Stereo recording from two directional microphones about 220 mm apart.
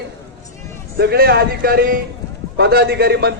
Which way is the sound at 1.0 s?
45° right (ahead or behind).